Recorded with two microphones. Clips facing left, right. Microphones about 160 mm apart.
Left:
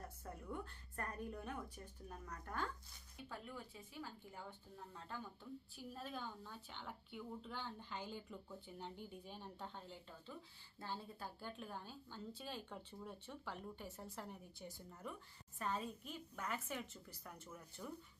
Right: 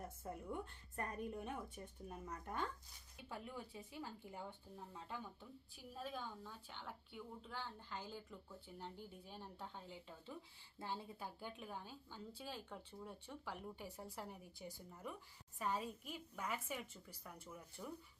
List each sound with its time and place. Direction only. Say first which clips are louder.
0.3 s a woman's voice: right 2 dB; 20° right (ahead or behind)
5.9 s a woman's voice: right 1 dB; 5° right (ahead or behind)
10.8 s a woman's voice: right 1 dB; 20° right (ahead or behind)